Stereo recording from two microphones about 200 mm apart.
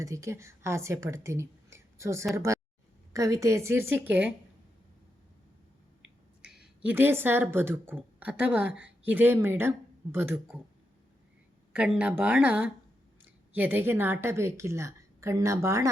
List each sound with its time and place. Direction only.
0.0 s a woman's voice: 15° right (ahead or behind)
6.8 s a woman's voice: 10° right (ahead or behind)
11.7 s a woman's voice: 5° right (ahead or behind)